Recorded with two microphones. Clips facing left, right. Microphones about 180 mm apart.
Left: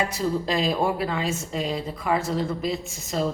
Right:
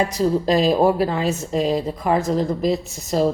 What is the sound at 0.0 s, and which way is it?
A woman's voice, 40° right (ahead or behind).